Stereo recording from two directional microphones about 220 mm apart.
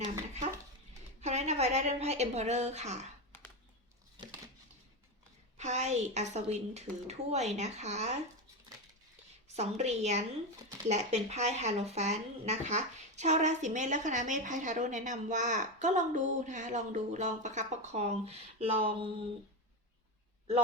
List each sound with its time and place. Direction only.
1.2 s a woman's voice: 30° right (ahead or behind)
3.3 s a sound: 10° left (ahead or behind)
5.5 s speech: 30° right (ahead or behind)
9.6 s speech: 30° right (ahead or behind)